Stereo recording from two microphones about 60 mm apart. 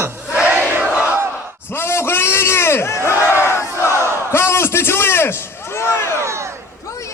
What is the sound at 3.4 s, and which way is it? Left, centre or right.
Battle cry, left.